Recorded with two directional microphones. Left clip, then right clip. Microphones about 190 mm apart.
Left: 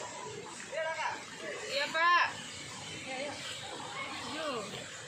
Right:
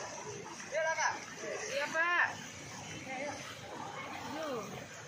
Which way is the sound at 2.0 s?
15° right (ahead or behind).